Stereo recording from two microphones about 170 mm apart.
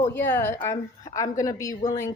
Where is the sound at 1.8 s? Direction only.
45° left (ahead or behind).